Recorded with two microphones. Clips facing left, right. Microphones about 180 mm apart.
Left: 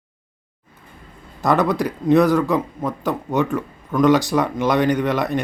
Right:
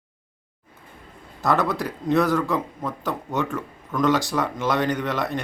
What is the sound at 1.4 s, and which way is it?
Speech, 15° left (ahead or behind).